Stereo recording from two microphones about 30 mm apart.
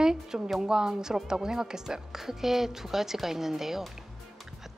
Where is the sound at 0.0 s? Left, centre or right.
Centre.